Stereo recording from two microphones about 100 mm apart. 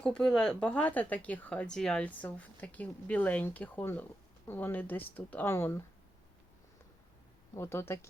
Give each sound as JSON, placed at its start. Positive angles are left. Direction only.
{"t": 0.0, "sound": "speech", "side_deg": 5}
{"t": 7.5, "sound": "speech", "side_deg": 25}